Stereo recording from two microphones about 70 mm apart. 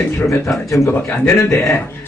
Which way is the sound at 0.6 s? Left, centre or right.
Left.